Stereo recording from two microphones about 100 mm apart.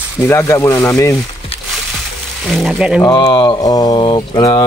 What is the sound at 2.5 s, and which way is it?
Speech, centre (ahead or behind).